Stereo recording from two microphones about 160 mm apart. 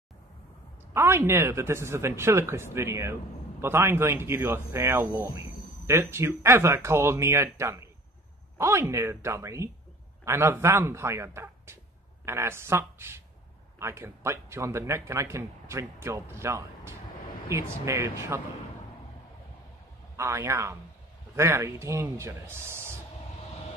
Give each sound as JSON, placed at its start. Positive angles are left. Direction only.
{"t": 0.9, "sound": "speech", "side_deg": -15}
{"t": 20.2, "sound": "speech", "side_deg": -20}